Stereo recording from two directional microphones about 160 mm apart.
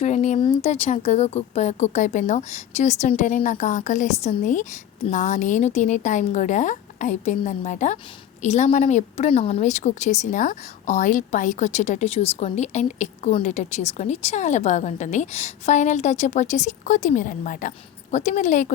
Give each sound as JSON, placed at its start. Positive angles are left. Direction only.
{"t": 0.0, "sound": "a woman's voice", "side_deg": 45}